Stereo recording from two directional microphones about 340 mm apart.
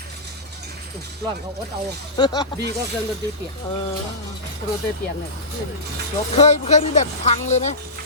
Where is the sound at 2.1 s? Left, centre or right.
Centre.